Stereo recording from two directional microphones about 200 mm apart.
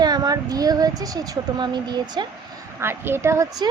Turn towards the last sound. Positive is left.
turn(degrees=-15)  # may be behind; listen again after turning